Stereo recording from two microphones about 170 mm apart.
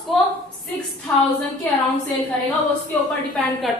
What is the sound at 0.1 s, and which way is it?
Speech, centre (ahead or behind).